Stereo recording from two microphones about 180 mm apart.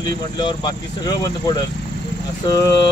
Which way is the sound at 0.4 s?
25° left (ahead or behind).